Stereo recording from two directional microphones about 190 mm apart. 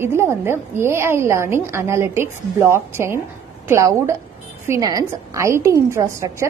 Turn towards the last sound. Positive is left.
turn(degrees=-15)  # may be behind; listen again after turning